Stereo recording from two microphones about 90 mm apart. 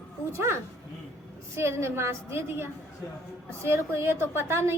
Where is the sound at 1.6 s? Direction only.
30° right (ahead or behind).